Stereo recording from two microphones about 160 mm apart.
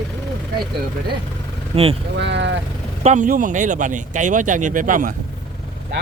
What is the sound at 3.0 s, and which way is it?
Speech, 50° right (ahead or behind).